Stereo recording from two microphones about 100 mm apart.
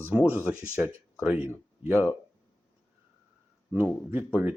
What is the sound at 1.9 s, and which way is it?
Speech, 25° left (ahead or behind).